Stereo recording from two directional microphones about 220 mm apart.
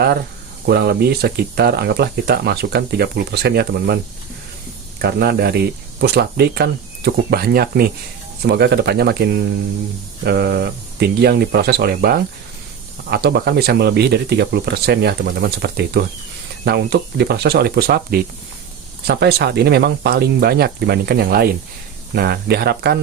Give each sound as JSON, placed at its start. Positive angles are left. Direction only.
{"t": 0.6, "sound": "speech", "side_deg": -45}
{"t": 4.9, "sound": "speech", "side_deg": -45}